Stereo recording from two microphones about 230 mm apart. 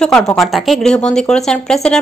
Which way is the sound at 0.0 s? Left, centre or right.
Centre.